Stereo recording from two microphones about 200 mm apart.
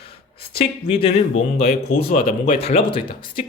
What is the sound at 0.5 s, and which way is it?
A man's voice, 25° left (ahead or behind).